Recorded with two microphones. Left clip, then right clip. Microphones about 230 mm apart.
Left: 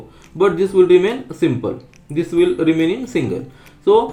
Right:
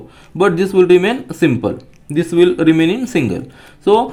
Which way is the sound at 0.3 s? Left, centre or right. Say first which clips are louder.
Right 1 dB; right.